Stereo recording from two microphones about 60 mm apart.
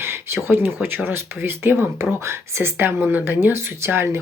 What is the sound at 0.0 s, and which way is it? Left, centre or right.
Speech, right.